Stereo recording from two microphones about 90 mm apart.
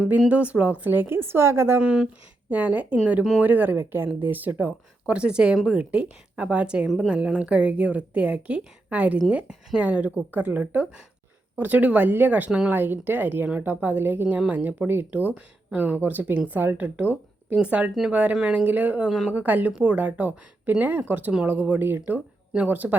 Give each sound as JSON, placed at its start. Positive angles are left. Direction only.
{"t": 0.3, "sound": "speech", "side_deg": -15}
{"t": 1.8, "sound": "a woman's voice", "side_deg": -10}
{"t": 12.7, "sound": "a woman's voice", "side_deg": -20}